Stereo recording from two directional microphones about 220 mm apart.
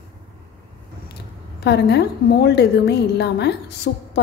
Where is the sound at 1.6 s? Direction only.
50° left (ahead or behind).